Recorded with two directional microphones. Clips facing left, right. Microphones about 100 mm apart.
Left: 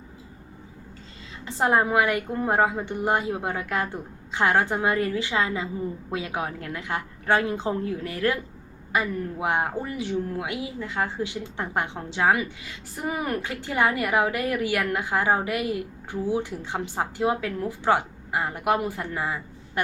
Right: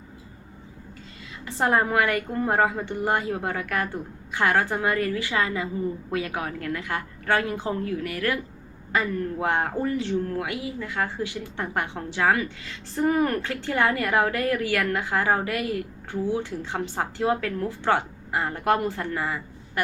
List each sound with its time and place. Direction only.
1.5 s a woman's voice: 20° left (ahead or behind)
8.9 s speech: 15° left (ahead or behind)